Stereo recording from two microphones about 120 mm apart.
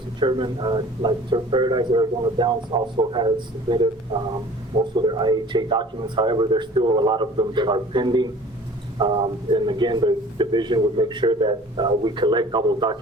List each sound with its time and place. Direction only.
0.2 s a man's voice: 40° right (ahead or behind)